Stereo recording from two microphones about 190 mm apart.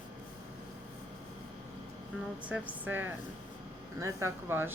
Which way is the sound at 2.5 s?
10° right (ahead or behind).